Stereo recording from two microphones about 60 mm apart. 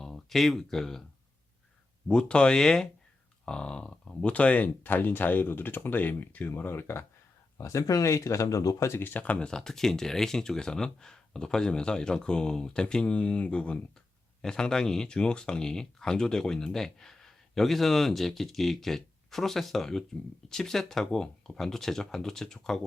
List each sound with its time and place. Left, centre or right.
0.0 s speech: centre
2.0 s speech: centre
6.5 s speech: left
7.6 s speech: left
8.9 s speech: left
9.5 s speech: centre